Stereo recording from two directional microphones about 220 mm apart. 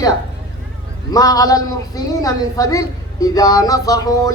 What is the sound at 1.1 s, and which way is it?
A man's voice, 15° left (ahead or behind).